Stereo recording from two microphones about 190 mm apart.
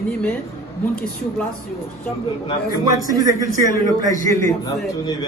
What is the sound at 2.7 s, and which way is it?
Speech, 20° right (ahead or behind).